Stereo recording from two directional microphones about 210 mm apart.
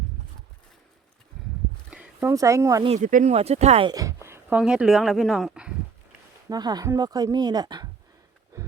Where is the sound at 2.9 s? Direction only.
35° right (ahead or behind).